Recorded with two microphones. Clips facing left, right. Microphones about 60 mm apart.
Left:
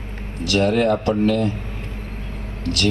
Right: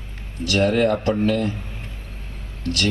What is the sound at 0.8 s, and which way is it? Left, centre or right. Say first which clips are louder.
Speech: left 1 dB; left.